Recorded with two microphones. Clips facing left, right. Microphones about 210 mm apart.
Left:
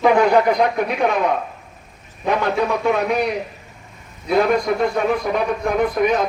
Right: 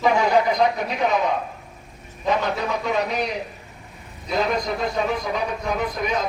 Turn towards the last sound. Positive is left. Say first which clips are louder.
# left 7 dB
turn(degrees=60)  # may be behind; listen again after turning